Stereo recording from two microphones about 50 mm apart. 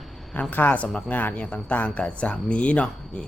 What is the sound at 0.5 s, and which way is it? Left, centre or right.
Speech, left.